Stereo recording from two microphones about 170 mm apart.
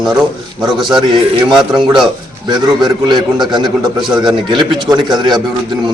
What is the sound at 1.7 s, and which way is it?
A man's voice, 25° right (ahead or behind).